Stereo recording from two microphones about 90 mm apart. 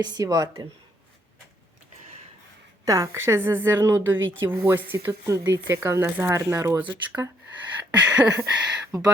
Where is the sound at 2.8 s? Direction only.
35° right (ahead or behind).